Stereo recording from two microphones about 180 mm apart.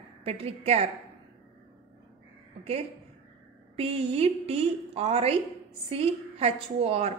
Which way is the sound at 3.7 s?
35° right (ahead or behind).